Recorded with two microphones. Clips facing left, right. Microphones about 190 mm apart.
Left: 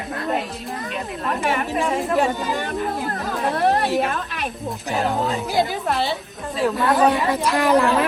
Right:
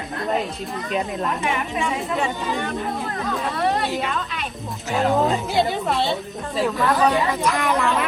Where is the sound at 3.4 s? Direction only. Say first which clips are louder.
Left 4 dB; 55° left (ahead or behind).